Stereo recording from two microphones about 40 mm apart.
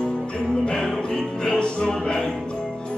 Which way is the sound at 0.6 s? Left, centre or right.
Centre.